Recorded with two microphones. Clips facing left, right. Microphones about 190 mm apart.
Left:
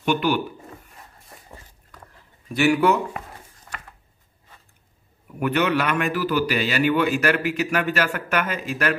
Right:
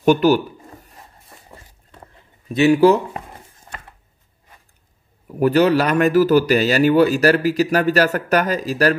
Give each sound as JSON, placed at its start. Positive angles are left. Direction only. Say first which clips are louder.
{"t": 0.0, "sound": "a man's voice", "louder": "right 8 dB", "side_deg": -40}
{"t": 2.4, "sound": "speech", "louder": "right 6 dB", "side_deg": -20}
{"t": 5.4, "sound": "a man's voice", "louder": "right 7 dB", "side_deg": -35}